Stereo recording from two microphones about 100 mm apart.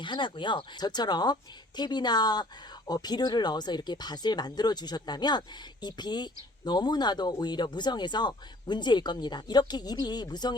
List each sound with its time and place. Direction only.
0.0 s speech: 55° left (ahead or behind)